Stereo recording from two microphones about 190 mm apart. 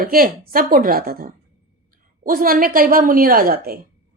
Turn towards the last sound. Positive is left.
turn(degrees=-50)  # may be behind; listen again after turning